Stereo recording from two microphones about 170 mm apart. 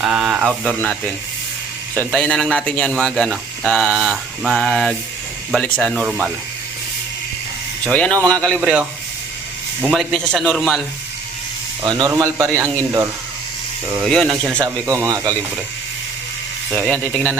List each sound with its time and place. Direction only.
0.0 s speech: 5° right (ahead or behind)
2.1 s speech: 5° left (ahead or behind)
7.9 s speech: 5° left (ahead or behind)
11.9 s speech: 20° right (ahead or behind)
14.0 s speech: centre (ahead or behind)
14.8 s speech: 15° right (ahead or behind)
16.6 s speech: centre (ahead or behind)